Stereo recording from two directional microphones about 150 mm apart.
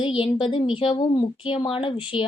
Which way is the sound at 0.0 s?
35° left (ahead or behind).